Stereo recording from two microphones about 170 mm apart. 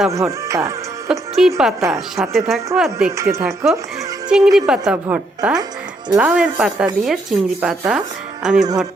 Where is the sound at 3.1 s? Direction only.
15° right (ahead or behind).